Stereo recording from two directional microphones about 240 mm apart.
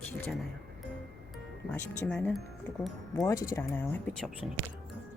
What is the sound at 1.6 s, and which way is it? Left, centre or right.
Speech, centre.